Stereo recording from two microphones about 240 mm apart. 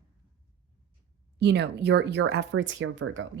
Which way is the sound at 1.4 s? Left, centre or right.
Right.